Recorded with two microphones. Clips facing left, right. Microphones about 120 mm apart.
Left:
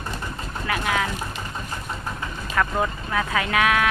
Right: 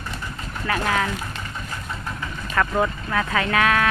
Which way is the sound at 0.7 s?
10° left (ahead or behind).